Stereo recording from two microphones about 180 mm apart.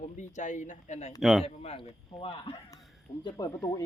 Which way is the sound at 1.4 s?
35° left (ahead or behind).